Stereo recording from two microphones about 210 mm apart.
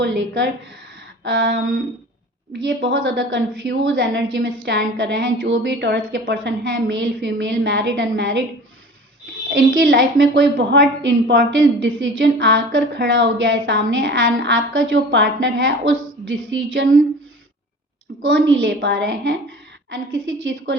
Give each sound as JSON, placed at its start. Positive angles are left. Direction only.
{"t": 0.0, "sound": "a woman's voice", "side_deg": -60}
{"t": 2.6, "sound": "a woman's voice", "side_deg": -60}
{"t": 9.5, "sound": "a woman's voice", "side_deg": -50}
{"t": 14.3, "sound": "a woman's voice", "side_deg": -50}
{"t": 18.2, "sound": "a woman's voice", "side_deg": -65}